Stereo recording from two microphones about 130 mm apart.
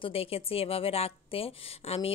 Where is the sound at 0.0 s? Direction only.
50° left (ahead or behind).